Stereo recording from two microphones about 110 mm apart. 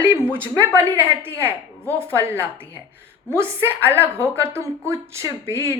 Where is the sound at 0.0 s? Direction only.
20° right (ahead or behind).